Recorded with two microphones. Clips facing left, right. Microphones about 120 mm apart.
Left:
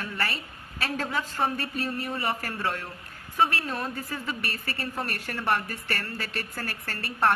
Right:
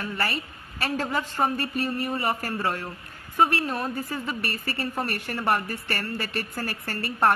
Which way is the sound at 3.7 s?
5° right (ahead or behind).